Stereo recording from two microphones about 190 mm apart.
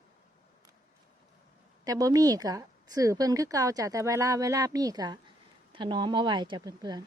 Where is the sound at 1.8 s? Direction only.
20° right (ahead or behind).